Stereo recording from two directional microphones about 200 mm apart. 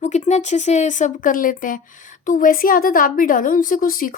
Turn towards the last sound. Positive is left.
turn(degrees=45)  # may be behind; listen again after turning